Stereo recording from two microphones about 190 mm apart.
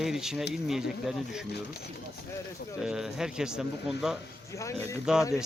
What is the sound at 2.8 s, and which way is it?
Speech, 5° right (ahead or behind).